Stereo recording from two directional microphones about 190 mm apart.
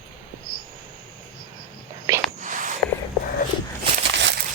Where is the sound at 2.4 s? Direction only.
40° right (ahead or behind).